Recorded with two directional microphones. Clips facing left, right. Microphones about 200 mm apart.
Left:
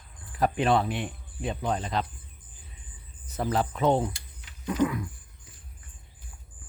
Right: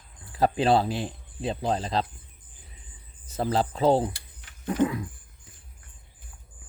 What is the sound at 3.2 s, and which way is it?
Speech, 30° right (ahead or behind).